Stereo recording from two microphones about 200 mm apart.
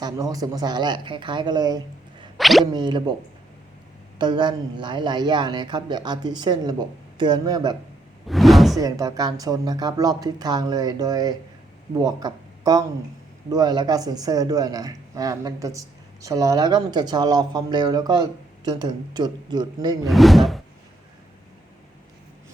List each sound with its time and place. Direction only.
0.0 s speech: 15° right (ahead or behind)
2.4 s speech: centre (ahead or behind)
2.7 s speech: 20° right (ahead or behind)
4.2 s speech: 20° right (ahead or behind)
8.3 s speech: centre (ahead or behind)
8.8 s speech: 20° right (ahead or behind)
20.1 s speech: centre (ahead or behind)